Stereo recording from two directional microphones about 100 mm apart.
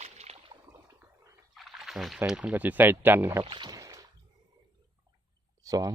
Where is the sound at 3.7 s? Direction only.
35° right (ahead or behind).